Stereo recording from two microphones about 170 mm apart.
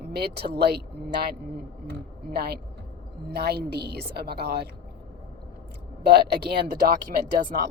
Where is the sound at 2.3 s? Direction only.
70° right (ahead or behind).